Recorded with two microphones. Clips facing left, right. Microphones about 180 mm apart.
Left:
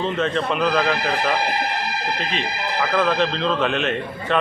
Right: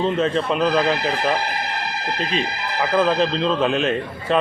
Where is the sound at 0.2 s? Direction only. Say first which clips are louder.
Right 2 dB; 35° right (ahead or behind).